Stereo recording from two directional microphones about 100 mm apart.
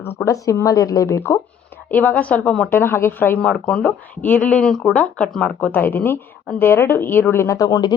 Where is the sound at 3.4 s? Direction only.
10° left (ahead or behind).